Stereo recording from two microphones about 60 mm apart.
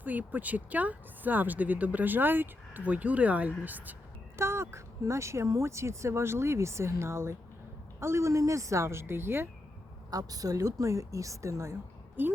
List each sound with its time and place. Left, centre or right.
0.0 s speech: right
4.4 s speech: right
10.1 s a woman's voice: right
12.2 s a woman's voice: right